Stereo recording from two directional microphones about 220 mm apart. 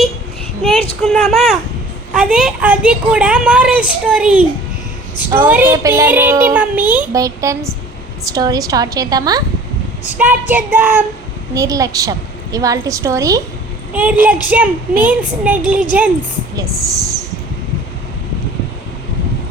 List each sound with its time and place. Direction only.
1.0 s a woman's voice: centre (ahead or behind)
5.5 s a child's voice: 10° right (ahead or behind)